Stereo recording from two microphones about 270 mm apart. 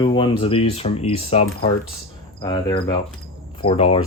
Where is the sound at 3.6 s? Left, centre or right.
Left.